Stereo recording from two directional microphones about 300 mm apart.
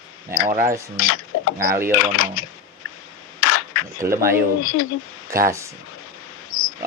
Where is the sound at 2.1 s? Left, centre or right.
Left.